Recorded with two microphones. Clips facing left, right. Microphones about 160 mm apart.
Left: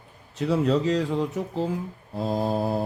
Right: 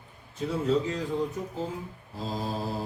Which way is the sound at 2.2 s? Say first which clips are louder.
Left 7 dB; 60° left (ahead or behind).